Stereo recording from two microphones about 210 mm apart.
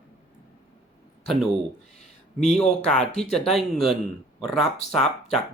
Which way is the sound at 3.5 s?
Centre (ahead or behind).